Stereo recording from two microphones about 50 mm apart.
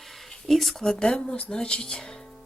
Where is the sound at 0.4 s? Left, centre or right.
Centre.